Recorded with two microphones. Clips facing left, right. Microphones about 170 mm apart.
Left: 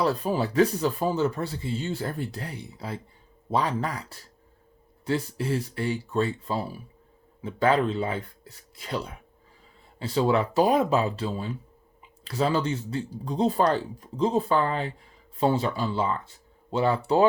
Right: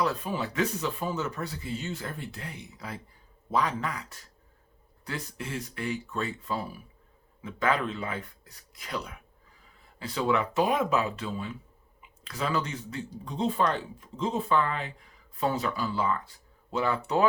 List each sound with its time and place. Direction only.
0.0 s speech: 35° left (ahead or behind)